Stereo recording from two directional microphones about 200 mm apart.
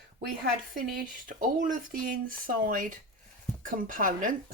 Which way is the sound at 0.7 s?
45° right (ahead or behind).